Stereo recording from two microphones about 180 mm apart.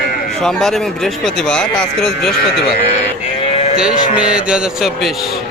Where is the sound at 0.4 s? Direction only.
5° left (ahead or behind).